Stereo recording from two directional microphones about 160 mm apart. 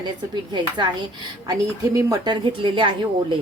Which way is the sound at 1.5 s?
20° right (ahead or behind).